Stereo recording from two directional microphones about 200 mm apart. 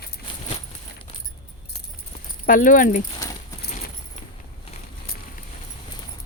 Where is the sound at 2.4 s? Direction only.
40° left (ahead or behind).